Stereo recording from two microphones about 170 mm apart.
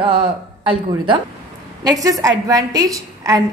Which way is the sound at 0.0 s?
30° right (ahead or behind).